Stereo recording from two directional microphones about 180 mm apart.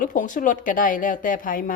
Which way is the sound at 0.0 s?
45° left (ahead or behind).